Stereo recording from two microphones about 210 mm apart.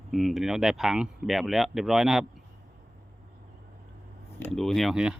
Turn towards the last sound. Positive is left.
turn(degrees=-5)  # may be behind; listen again after turning